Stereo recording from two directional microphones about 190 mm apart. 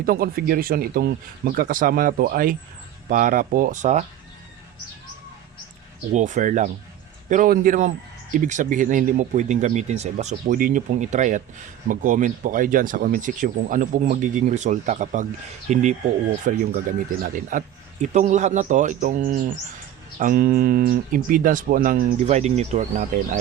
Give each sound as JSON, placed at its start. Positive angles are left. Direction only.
{"t": 0.0, "sound": "speech", "side_deg": -50}
{"t": 6.1, "sound": "speech", "side_deg": -40}
{"t": 10.4, "sound": "speech", "side_deg": -50}
{"t": 18.0, "sound": "speech", "side_deg": -40}